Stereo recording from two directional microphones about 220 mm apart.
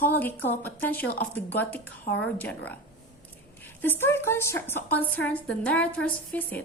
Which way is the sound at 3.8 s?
10° left (ahead or behind).